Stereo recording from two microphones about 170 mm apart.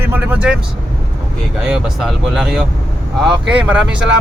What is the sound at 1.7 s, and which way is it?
Speech, 5° right (ahead or behind).